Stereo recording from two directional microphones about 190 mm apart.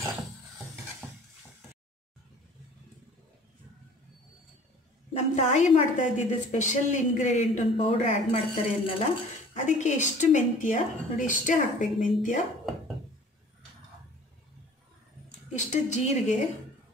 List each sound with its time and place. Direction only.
5.1 s speech: 40° left (ahead or behind)
7.7 s speech: 30° left (ahead or behind)
15.5 s speech: 40° left (ahead or behind)